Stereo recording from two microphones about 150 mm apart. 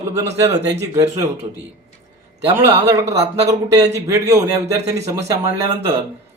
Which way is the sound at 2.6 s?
20° right (ahead or behind).